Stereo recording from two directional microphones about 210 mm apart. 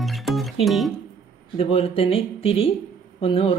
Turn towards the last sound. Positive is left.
turn(degrees=25)  # may be behind; listen again after turning